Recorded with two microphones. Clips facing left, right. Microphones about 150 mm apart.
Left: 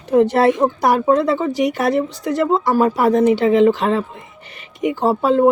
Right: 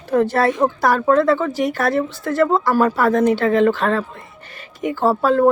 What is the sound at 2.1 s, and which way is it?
Speech, 60° right (ahead or behind).